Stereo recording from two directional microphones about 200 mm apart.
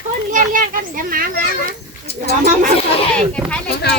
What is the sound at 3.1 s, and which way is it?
Speech, 5° left (ahead or behind).